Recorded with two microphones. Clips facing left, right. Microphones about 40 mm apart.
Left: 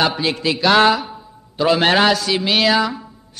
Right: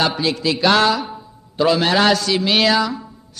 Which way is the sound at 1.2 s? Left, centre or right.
Centre.